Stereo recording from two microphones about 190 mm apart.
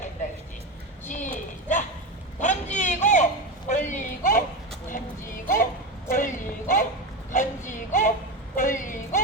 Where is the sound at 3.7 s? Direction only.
40° left (ahead or behind).